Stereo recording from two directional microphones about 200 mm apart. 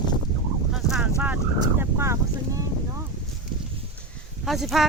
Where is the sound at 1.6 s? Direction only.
15° right (ahead or behind).